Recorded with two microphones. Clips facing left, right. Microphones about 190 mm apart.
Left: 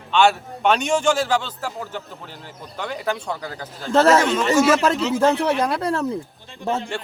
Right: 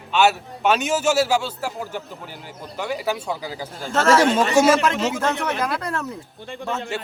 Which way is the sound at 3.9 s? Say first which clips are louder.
Left 3 dB; 35° left (ahead or behind).